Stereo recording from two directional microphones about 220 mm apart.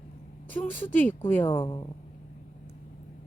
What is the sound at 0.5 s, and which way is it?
Speech, 10° left (ahead or behind).